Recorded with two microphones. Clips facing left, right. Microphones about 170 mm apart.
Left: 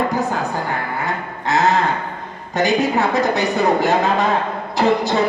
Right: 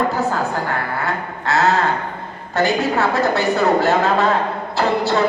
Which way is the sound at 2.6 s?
15° left (ahead or behind).